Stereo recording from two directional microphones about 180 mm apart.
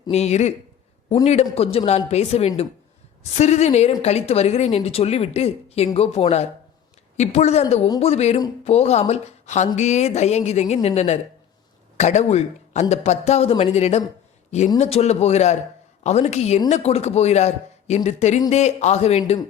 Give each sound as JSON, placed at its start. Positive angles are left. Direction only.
{"t": 0.1, "sound": "a man's voice", "side_deg": 40}